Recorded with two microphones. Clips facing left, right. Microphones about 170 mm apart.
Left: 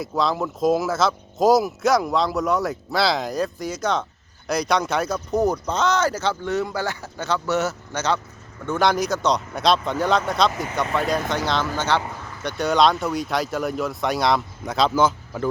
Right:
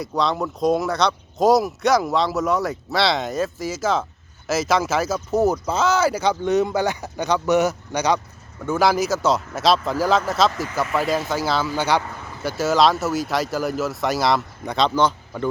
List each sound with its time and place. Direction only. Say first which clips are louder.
0.0 s speech: even; centre (ahead or behind)
10.5 s speech: even; 20° left (ahead or behind)
10.9 s speech: right 1 dB; 5° right (ahead or behind)